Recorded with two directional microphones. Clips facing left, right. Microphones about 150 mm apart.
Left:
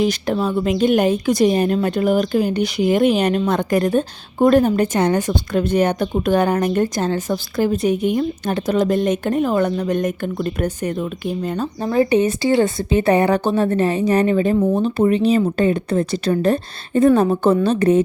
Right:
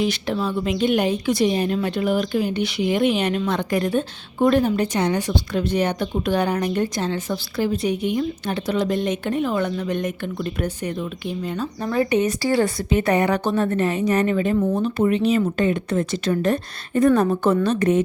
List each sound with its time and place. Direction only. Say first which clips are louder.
0.0 s a woman's voice: left 4 dB; 40° left (ahead or behind)
11.8 s a woman's voice: left 4 dB; 30° left (ahead or behind)